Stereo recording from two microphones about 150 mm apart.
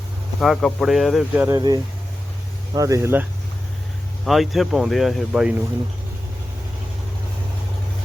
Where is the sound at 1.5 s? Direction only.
25° right (ahead or behind).